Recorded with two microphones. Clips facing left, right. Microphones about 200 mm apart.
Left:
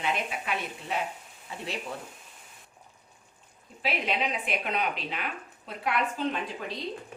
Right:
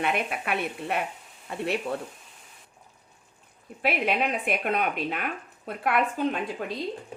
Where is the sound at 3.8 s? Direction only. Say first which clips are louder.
Right 4 dB; 55° right (ahead or behind).